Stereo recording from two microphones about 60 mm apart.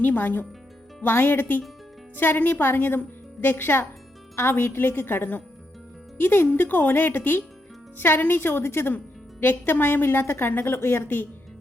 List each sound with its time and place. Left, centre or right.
0.0 s a woman's voice: left